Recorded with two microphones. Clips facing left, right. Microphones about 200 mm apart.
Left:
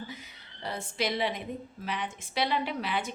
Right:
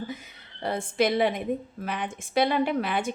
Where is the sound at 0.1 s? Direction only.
50° right (ahead or behind).